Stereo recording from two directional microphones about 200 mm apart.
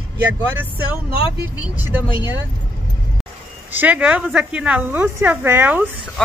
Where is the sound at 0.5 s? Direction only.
10° right (ahead or behind).